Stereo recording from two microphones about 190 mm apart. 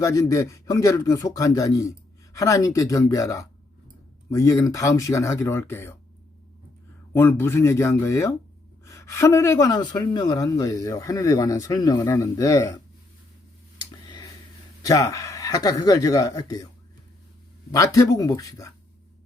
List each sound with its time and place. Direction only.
0.0 s speech: 15° left (ahead or behind)
7.1 s speech: 10° left (ahead or behind)
13.7 s tick: 20° left (ahead or behind)
14.8 s speech: 15° left (ahead or behind)
17.7 s speech: 15° left (ahead or behind)